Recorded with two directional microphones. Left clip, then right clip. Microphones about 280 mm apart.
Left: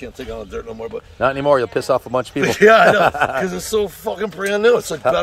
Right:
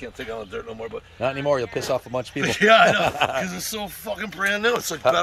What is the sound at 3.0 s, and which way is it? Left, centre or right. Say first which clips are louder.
Speech: left 6 dB; centre.